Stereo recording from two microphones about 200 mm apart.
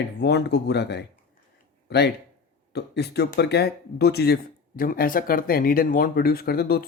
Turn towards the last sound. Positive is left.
turn(degrees=50)  # may be behind; listen again after turning